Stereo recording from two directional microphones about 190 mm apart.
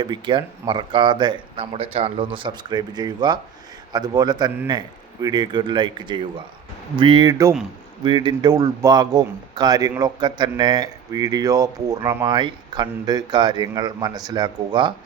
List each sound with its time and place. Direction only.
0.0 s speech: 25° right (ahead or behind)